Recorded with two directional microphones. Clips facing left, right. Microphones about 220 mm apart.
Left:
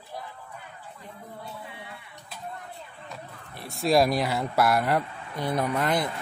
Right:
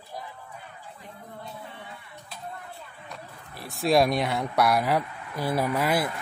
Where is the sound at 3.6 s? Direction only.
Centre (ahead or behind).